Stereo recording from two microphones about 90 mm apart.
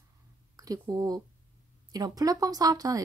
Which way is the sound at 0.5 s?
40° right (ahead or behind).